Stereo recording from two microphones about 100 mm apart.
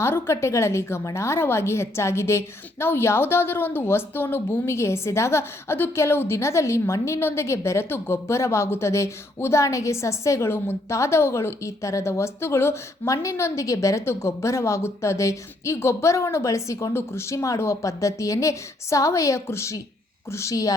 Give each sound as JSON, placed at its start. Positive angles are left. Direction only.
{"t": 0.0, "sound": "a woman's voice", "side_deg": 25}